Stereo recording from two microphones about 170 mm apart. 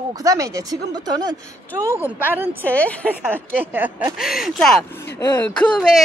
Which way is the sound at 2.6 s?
10° left (ahead or behind).